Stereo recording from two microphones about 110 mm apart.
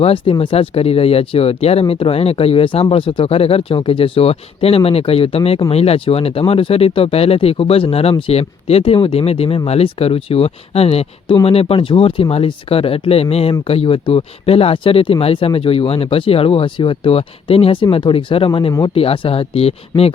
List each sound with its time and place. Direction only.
0.0 s speech: 60° left (ahead or behind)